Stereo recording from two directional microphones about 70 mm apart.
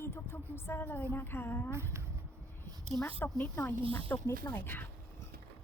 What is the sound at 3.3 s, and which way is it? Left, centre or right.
A woman's voice, left.